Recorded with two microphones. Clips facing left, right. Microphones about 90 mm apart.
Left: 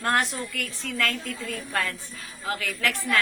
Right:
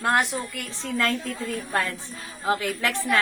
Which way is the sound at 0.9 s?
30° right (ahead or behind).